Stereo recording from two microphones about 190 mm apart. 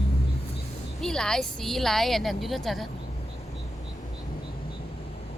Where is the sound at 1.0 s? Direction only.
5° left (ahead or behind).